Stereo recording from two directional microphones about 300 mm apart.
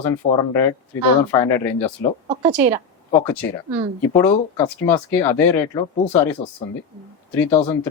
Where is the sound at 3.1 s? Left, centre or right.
Centre.